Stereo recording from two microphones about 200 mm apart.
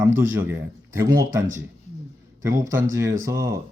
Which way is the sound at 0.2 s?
15° right (ahead or behind).